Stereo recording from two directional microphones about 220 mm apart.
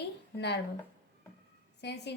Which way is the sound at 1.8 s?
50° left (ahead or behind).